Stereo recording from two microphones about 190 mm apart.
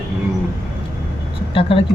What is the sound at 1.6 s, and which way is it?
Speech, 30° left (ahead or behind).